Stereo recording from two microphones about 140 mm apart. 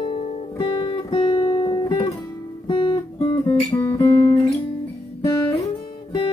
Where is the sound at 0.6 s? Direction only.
35° left (ahead or behind).